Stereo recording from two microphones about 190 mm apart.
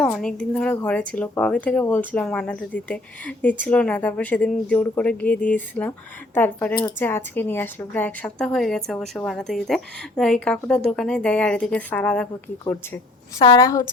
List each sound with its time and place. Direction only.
0.0 s speech: 5° left (ahead or behind)
13.4 s a woman's voice: 20° left (ahead or behind)